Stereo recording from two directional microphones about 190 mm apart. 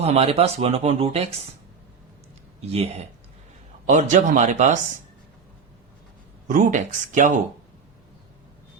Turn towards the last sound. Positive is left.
turn(degrees=-40)  # may be behind; listen again after turning